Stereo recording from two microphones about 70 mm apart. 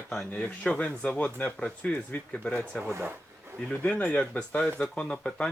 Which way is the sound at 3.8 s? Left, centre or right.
Left.